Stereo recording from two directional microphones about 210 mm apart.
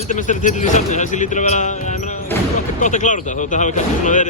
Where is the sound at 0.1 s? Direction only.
35° left (ahead or behind).